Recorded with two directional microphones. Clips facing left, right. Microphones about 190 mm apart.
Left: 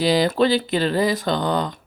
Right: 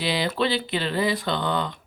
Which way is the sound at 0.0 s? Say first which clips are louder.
Left 7 dB; 40° left (ahead or behind).